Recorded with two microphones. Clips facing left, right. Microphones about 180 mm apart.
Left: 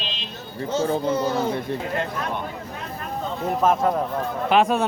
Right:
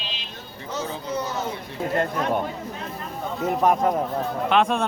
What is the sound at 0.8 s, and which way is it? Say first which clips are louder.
Speech: left 10 dB; 50° left (ahead or behind).